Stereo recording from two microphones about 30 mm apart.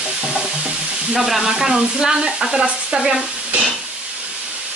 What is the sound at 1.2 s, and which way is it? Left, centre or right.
Stir, centre.